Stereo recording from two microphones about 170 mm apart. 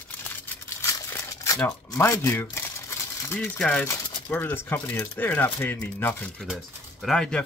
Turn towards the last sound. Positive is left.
turn(degrees=5)  # may be behind; listen again after turning